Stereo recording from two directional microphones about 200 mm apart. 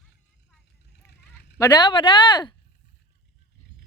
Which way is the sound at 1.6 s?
20° left (ahead or behind).